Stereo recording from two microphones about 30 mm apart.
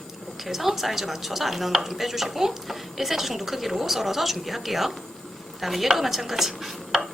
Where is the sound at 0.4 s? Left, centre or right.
Centre.